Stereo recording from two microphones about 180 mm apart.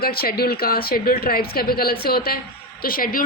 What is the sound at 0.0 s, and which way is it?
A woman's voice, 55° left (ahead or behind).